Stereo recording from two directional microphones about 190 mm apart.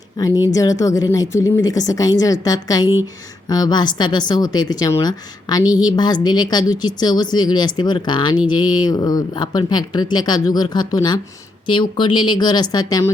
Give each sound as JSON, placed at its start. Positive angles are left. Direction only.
{"t": 0.2, "sound": "speech", "side_deg": 20}